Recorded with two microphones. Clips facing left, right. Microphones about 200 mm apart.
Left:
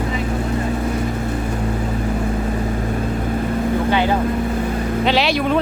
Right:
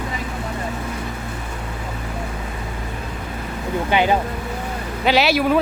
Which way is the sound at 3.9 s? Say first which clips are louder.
Right 2 dB; 15° right (ahead or behind).